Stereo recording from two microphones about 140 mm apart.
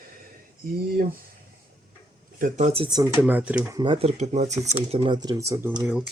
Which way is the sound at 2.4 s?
60° right (ahead or behind).